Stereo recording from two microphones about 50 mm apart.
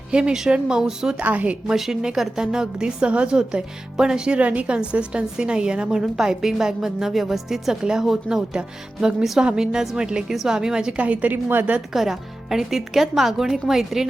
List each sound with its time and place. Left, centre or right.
0.1 s a woman's voice: centre
1.2 s a woman's voice: right
1.6 s a woman's voice: centre
4.4 s a woman's voice: right; by 7.8 s centre
7.8 s a woman's voice: centre
11.0 s a woman's voice: right
11.9 s speech: centre